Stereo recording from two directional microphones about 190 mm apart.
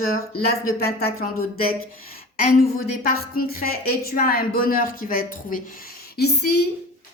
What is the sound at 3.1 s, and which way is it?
Speech, 55° left (ahead or behind).